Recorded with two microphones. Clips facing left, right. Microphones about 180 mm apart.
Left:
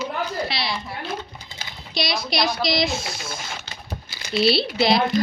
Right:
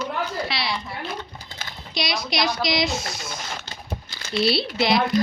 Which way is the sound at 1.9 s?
30° left (ahead or behind).